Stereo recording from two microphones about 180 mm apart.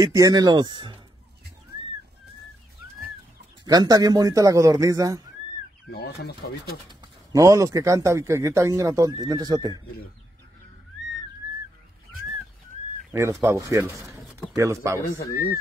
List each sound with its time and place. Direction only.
0.0 s a man's voice: 20° right (ahead or behind)
3.6 s a man's voice: 20° right (ahead or behind)
5.9 s speech: 65° left (ahead or behind)
6.9 s speech: 20° right (ahead or behind)
13.1 s speech: 15° right (ahead or behind)
15.0 s speech: 20° left (ahead or behind)